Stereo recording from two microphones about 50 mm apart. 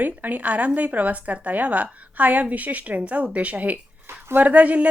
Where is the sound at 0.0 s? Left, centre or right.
Right.